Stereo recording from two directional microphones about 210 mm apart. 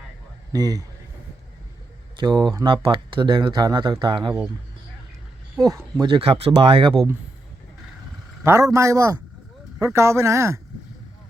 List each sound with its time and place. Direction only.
0.5 s speech: 15° right (ahead or behind)
2.1 s speech: 20° right (ahead or behind)
5.6 s speech: 20° right (ahead or behind)
8.4 s speech: 15° right (ahead or behind)